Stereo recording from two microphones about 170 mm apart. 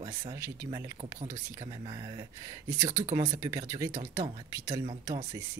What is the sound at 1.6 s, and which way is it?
Speech, 30° right (ahead or behind).